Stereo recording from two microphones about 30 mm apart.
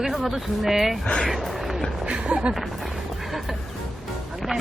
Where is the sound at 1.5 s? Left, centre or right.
Centre.